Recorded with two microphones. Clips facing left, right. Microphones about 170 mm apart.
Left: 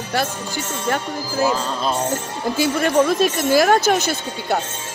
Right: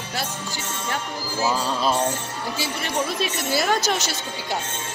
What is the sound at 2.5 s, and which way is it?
A woman's voice, 50° left (ahead or behind).